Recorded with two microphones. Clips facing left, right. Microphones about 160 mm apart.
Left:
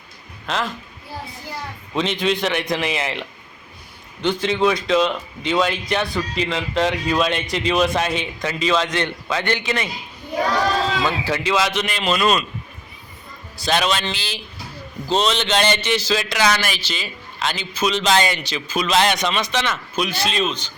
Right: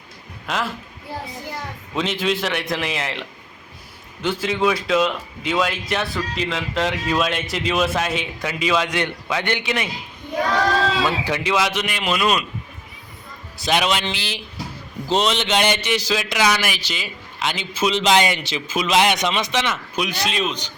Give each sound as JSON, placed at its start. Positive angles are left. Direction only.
{"t": 0.4, "sound": "speech", "side_deg": -10}
{"t": 2.0, "sound": "a man's voice", "side_deg": -5}
{"t": 11.2, "sound": "a man's voice", "side_deg": -15}
{"t": 13.7, "sound": "a man's voice", "side_deg": -15}